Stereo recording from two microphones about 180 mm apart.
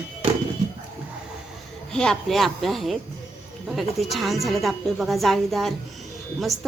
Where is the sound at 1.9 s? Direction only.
5° left (ahead or behind).